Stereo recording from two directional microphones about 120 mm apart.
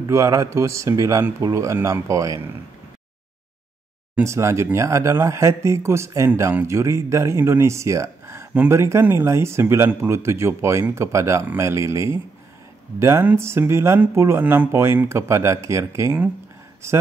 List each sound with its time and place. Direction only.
0.0 s speech: 25° right (ahead or behind)
4.2 s speech: 25° right (ahead or behind)